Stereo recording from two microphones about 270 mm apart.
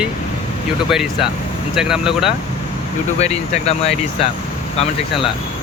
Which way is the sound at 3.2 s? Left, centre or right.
Left.